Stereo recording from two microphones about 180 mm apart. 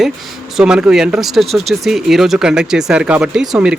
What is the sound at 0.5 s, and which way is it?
Speech, 5° right (ahead or behind).